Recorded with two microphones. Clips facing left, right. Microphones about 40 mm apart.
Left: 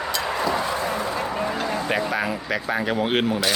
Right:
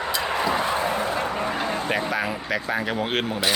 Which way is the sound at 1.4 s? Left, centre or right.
Right.